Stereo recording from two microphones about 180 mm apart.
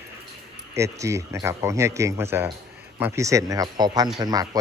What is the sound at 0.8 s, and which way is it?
Speech, 15° right (ahead or behind).